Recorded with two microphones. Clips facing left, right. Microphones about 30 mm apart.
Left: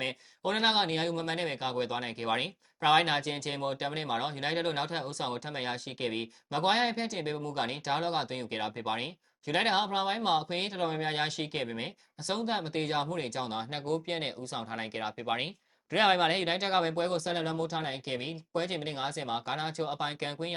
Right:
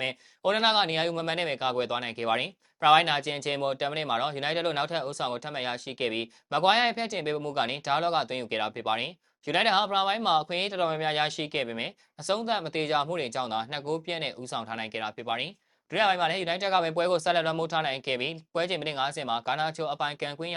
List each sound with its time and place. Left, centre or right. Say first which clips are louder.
0.0 s speech: right 5 dB; centre
13.8 s speech: right 1 dB; centre
15.0 s speech: even; centre
16.4 s speech: right 1 dB; centre
16.6 s speech: right 5 dB; centre
17.2 s speech: right 6 dB; right; by 20.5 s centre